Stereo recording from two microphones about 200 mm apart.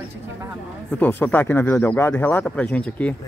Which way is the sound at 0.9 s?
10° left (ahead or behind).